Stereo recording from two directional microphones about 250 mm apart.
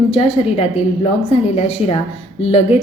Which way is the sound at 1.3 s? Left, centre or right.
Left.